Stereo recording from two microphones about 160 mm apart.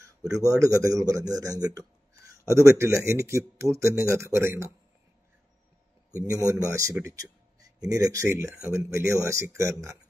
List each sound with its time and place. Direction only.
0.4 s a man's voice: 20° right (ahead or behind)
6.2 s a man's voice: 20° right (ahead or behind)